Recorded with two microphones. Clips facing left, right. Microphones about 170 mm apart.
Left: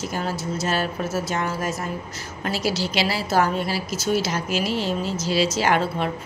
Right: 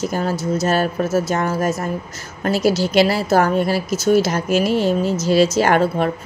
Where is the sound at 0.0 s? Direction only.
45° right (ahead or behind).